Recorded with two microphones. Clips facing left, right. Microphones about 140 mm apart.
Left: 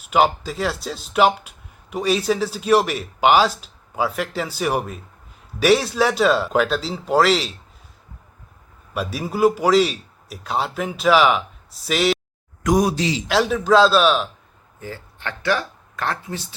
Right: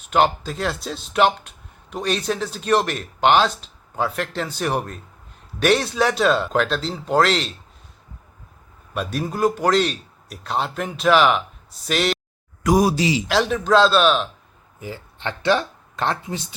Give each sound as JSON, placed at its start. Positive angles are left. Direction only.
{"t": 0.0, "sound": "speech", "side_deg": 5}
{"t": 9.0, "sound": "speech", "side_deg": 5}
{"t": 14.8, "sound": "speech", "side_deg": -15}